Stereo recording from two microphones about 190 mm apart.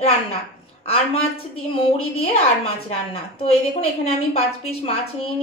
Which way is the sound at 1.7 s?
30° left (ahead or behind).